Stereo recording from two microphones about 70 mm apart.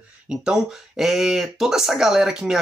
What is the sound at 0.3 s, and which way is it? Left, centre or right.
Speech, centre.